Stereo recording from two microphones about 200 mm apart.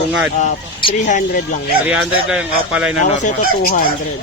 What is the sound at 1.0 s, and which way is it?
Speech, 40° left (ahead or behind).